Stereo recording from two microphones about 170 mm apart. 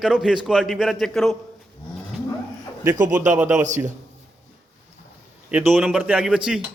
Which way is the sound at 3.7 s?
45° right (ahead or behind).